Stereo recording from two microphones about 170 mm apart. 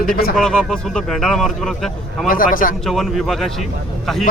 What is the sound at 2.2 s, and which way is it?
Speech, 55° left (ahead or behind).